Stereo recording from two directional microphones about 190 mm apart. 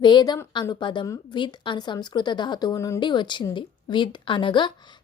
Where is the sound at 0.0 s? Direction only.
25° left (ahead or behind).